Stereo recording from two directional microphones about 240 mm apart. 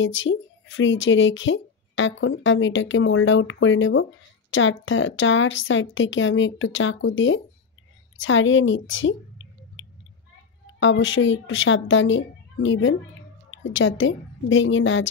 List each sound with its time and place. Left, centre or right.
0.0 s speech: left